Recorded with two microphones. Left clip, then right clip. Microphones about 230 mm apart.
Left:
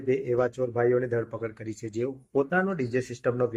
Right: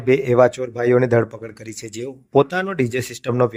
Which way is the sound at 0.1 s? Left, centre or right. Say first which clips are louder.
Right 11 dB; right.